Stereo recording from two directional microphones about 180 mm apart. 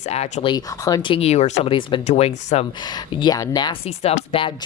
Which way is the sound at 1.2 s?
35° left (ahead or behind).